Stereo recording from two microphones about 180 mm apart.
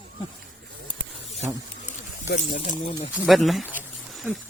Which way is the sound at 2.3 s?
40° left (ahead or behind).